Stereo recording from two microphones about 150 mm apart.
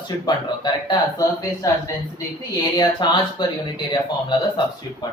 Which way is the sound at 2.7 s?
30° left (ahead or behind).